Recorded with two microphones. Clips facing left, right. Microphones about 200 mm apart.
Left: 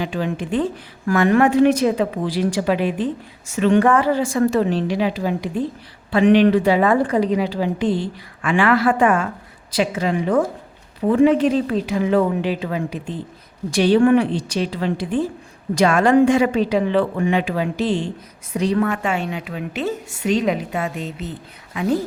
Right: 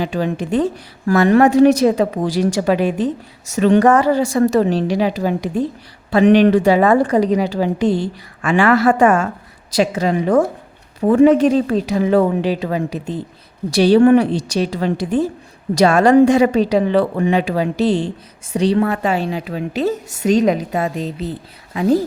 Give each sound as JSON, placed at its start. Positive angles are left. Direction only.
{"t": 0.0, "sound": "a woman's voice", "side_deg": -40}